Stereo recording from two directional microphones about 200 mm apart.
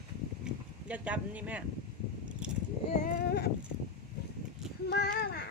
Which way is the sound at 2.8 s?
35° left (ahead or behind).